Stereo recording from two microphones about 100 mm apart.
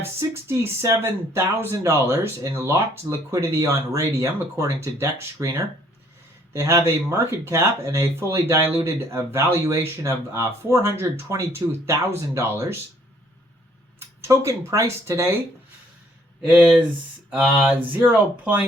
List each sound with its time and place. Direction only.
0.0 s speech: 25° right (ahead or behind)
14.2 s speech: 30° right (ahead or behind)
16.4 s speech: 15° right (ahead or behind)